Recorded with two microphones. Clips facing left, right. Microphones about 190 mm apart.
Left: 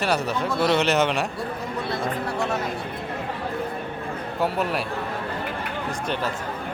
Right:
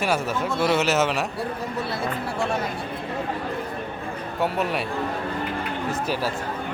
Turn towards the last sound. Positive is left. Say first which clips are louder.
# even
turn(degrees=0)  # may be behind; listen again after turning